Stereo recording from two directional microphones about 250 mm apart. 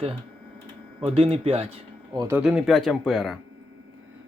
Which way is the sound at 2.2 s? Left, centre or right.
Centre.